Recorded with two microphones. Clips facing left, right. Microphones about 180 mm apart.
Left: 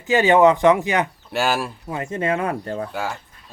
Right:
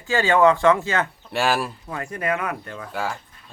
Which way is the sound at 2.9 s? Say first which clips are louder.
Left 1 dB; centre (ahead or behind).